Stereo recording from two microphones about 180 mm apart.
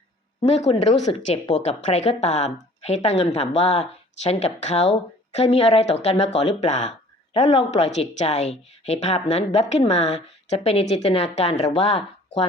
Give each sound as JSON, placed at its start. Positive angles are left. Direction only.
{"t": 0.4, "sound": "speech", "side_deg": 35}